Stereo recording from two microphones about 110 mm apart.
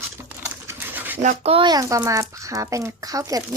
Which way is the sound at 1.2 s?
65° right (ahead or behind).